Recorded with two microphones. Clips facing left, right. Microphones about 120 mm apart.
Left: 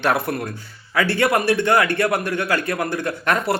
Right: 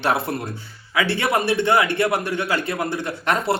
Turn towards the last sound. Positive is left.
turn(degrees=-25)  # may be behind; listen again after turning